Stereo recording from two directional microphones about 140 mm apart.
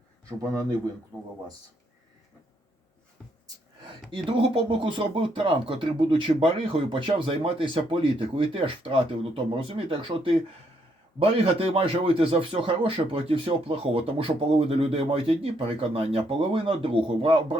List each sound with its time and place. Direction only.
1.1 s speech: centre (ahead or behind)
4.1 s speech: 40° right (ahead or behind)